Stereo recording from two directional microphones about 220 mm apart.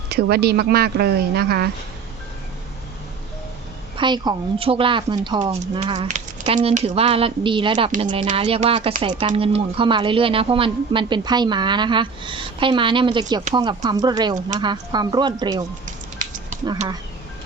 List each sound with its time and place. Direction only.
0.1 s speech: 45° right (ahead or behind)
3.9 s speech: 20° right (ahead or behind)